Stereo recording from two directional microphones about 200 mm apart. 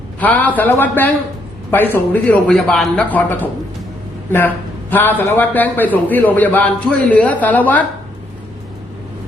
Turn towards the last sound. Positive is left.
turn(degrees=10)  # may be behind; listen again after turning